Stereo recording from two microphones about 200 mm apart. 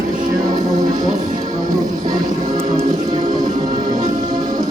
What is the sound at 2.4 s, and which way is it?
Music, 30° right (ahead or behind).